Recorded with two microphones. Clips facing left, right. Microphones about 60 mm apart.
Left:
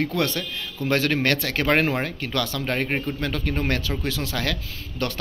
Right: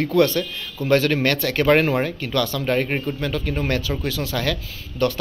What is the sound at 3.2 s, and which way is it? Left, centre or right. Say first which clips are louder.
A man's voice: right 2 dB; left.